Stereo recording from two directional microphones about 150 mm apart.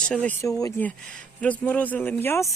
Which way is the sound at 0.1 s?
10° left (ahead or behind).